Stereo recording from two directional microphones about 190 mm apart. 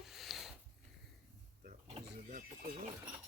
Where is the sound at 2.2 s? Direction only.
45° right (ahead or behind).